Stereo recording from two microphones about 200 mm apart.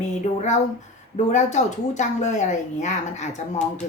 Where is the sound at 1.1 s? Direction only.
35° left (ahead or behind).